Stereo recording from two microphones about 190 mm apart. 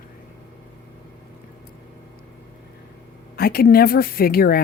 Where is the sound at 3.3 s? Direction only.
55° left (ahead or behind).